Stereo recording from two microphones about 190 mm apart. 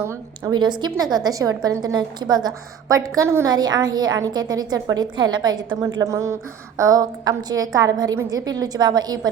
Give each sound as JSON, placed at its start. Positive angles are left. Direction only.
{"t": 0.0, "sound": "a woman's voice", "side_deg": -15}